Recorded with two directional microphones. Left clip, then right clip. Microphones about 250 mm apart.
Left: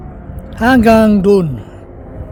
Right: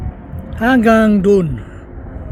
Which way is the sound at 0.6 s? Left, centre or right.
Centre.